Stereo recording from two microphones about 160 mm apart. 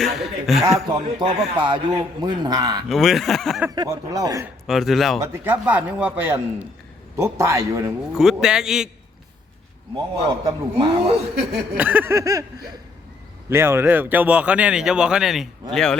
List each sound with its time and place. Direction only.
0.0 s a man's voice: centre (ahead or behind)
0.9 s a man's voice: 30° right (ahead or behind)
2.9 s a man's voice: centre (ahead or behind)
3.8 s a man's voice: 25° right (ahead or behind)
4.6 s a man's voice: centre (ahead or behind)
5.2 s speech: 15° right (ahead or behind)
8.1 s a man's voice: 5° right (ahead or behind)
9.9 s a man's voice: 30° right (ahead or behind)
11.8 s speech: 10° right (ahead or behind)
13.5 s a man's voice: 15° right (ahead or behind); by 16.0 s 5° left (ahead or behind)